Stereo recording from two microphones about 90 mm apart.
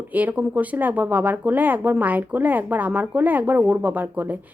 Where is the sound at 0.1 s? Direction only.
20° right (ahead or behind).